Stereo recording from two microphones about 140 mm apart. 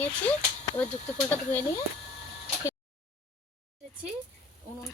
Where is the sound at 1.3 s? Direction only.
15° left (ahead or behind).